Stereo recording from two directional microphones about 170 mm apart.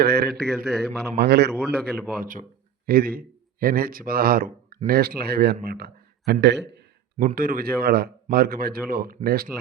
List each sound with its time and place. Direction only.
0.0 s a man's voice: 70° right (ahead or behind)
0.5 s a man's voice: centre (ahead or behind)
1.1 s a man's voice: 70° right (ahead or behind)
1.7 s a man's voice: 60° right (ahead or behind); by 6.7 s 90° right
7.3 s speech: 60° right (ahead or behind)